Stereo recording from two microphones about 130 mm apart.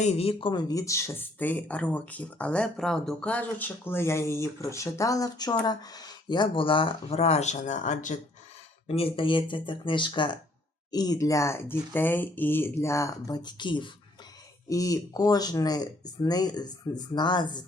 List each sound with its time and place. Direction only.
0.0 s speech: 55° left (ahead or behind)
0.7 s speech: 25° left (ahead or behind); by 8.2 s 70° left (ahead or behind)
8.9 s speech: 50° left (ahead or behind)
14.7 s speech: 25° left (ahead or behind)